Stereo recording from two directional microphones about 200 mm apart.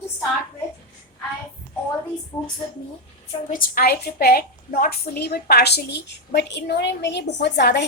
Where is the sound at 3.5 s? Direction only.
50° left (ahead or behind).